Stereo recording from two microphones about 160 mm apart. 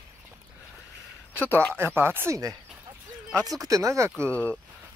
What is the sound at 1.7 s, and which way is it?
Speech, 15° right (ahead or behind).